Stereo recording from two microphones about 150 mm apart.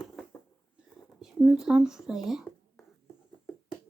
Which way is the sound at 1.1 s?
5° right (ahead or behind).